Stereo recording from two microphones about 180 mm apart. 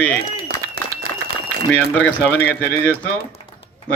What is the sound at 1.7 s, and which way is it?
Speech, 5° left (ahead or behind).